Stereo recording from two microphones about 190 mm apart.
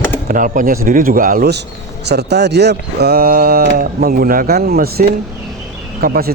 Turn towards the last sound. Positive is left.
turn(degrees=-55)  # may be behind; listen again after turning